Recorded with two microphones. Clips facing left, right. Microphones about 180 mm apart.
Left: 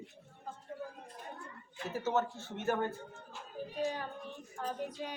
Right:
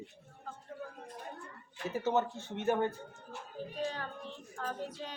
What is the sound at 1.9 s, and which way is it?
Speech, 15° right (ahead or behind).